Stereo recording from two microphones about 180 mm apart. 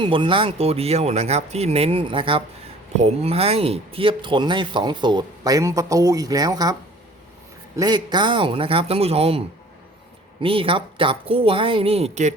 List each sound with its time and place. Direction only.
0.0 s speech: 30° right (ahead or behind)
7.8 s speech: 25° right (ahead or behind)
10.4 s speech: 30° right (ahead or behind)